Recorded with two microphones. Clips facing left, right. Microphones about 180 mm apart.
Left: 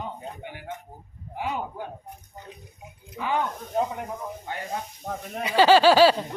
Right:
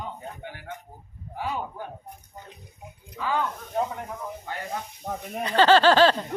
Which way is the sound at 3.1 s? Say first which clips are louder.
Left 1 dB; 20° left (ahead or behind).